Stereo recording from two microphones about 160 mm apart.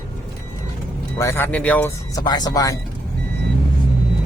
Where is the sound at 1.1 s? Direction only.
15° left (ahead or behind).